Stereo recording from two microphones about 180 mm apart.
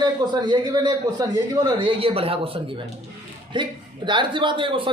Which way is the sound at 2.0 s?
30° right (ahead or behind).